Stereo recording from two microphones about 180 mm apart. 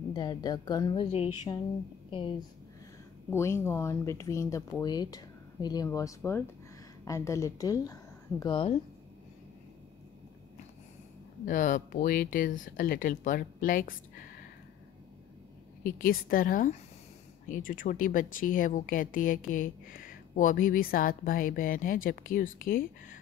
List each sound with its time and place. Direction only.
0.1 s a woman's voice: 25° left (ahead or behind)
1.1 s a sound: 35° left (ahead or behind)
3.3 s a woman's voice: 15° left (ahead or behind)
11.4 s speech: 45° left (ahead or behind)
15.8 s speech: 50° left (ahead or behind)